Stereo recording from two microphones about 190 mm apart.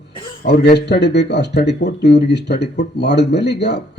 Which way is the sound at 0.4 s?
60° left (ahead or behind).